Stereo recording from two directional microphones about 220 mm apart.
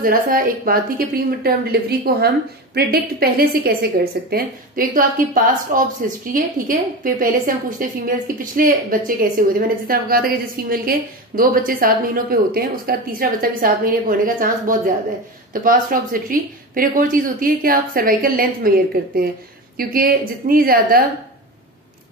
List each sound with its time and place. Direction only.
0.0 s a woman's voice: 40° right (ahead or behind)